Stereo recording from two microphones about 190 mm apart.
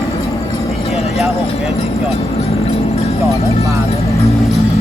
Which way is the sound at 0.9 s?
30° left (ahead or behind).